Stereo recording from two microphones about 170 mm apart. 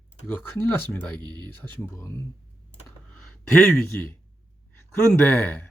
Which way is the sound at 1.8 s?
15° left (ahead or behind).